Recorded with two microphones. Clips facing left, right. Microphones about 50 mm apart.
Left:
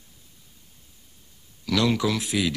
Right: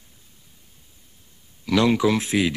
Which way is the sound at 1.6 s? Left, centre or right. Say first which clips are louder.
Right 4 dB; right.